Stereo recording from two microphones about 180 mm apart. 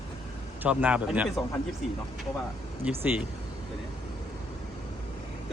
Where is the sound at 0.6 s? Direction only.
10° right (ahead or behind).